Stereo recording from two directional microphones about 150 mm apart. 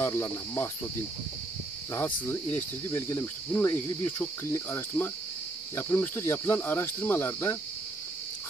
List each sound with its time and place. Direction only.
0.0 s cricket: 15° left (ahead or behind)
2.0 s cricket: 15° left (ahead or behind)